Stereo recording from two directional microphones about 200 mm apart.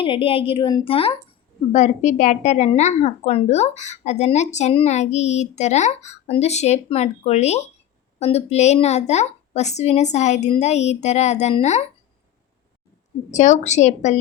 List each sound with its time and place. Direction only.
0.0 s a woman's voice: 25° left (ahead or behind)
13.3 s a woman's voice: 35° left (ahead or behind)